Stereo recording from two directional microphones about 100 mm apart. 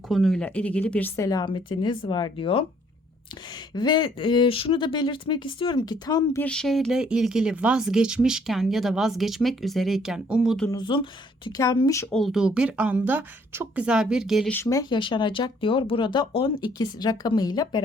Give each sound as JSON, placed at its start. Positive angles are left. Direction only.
{"t": 0.1, "sound": "speech", "side_deg": 5}
{"t": 1.1, "sound": "speech", "side_deg": 35}
{"t": 1.5, "sound": "speech", "side_deg": 50}
{"t": 3.8, "sound": "speech", "side_deg": 45}
{"t": 6.4, "sound": "speech", "side_deg": 5}
{"t": 10.8, "sound": "a woman's voice", "side_deg": 55}
{"t": 11.5, "sound": "speech", "side_deg": 40}
{"t": 12.1, "sound": "speech", "side_deg": 0}
{"t": 13.7, "sound": "speech", "side_deg": -10}
{"t": 14.7, "sound": "speech", "side_deg": 40}
{"t": 14.9, "sound": "speech", "side_deg": 55}